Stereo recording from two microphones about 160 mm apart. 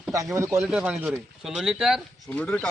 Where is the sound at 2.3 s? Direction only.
10° left (ahead or behind).